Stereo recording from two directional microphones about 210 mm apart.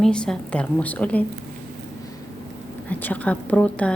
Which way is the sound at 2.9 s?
10° left (ahead or behind).